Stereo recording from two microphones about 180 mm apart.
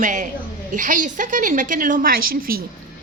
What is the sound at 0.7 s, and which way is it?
A woman's voice, 45° right (ahead or behind).